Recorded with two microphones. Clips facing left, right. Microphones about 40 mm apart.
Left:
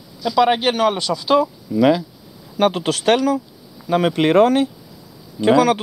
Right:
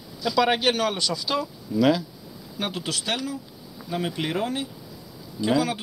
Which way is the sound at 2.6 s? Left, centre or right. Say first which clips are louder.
Left 12 dB; left.